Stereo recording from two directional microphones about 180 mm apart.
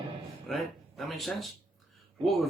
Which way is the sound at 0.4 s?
Centre (ahead or behind).